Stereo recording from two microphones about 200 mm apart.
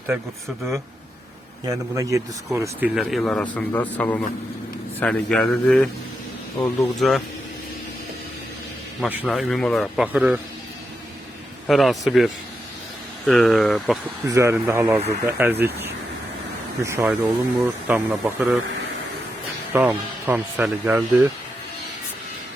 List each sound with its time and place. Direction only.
0.1 s speech: 10° right (ahead or behind)
2.9 s a man's voice: centre (ahead or behind)
9.0 s speech: 5° right (ahead or behind)
11.7 s speech: centre (ahead or behind)
14.3 s speech: 15° right (ahead or behind)
19.7 s speech: 10° right (ahead or behind)